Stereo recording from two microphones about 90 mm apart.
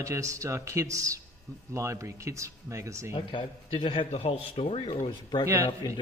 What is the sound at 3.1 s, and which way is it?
A man's voice, 70° left (ahead or behind).